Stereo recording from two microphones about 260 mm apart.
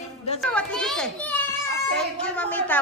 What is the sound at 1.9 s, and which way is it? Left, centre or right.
Speech, centre.